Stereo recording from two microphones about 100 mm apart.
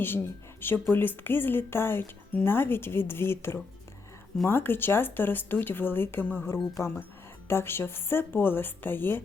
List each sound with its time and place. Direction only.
0.0 s a woman's voice: 20° left (ahead or behind)